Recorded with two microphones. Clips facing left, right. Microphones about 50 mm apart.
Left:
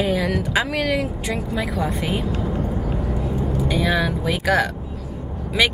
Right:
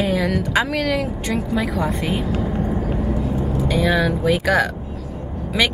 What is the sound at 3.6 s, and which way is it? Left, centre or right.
Speech, centre.